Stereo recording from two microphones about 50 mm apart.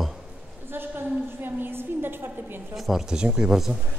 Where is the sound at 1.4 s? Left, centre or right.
Right.